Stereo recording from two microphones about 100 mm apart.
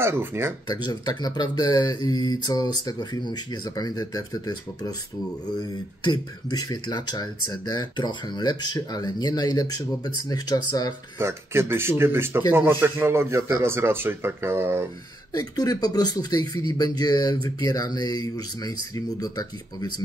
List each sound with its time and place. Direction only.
0.0 s speech: 20° right (ahead or behind)
0.7 s speech: 45° left (ahead or behind)
11.1 s speech: 25° right (ahead or behind)
15.3 s speech: 40° left (ahead or behind)